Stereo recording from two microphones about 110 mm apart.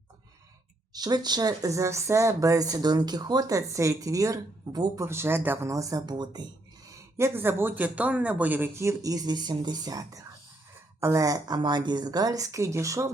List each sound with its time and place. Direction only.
0.9 s speech: 40° right (ahead or behind)
5.0 s speech: 20° right (ahead or behind)
5.7 s speech: 30° right (ahead or behind)